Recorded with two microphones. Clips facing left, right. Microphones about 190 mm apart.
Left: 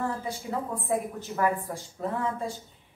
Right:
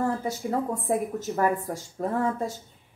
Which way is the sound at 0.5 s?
40° right (ahead or behind).